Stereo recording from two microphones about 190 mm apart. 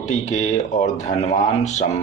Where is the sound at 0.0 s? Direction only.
40° left (ahead or behind).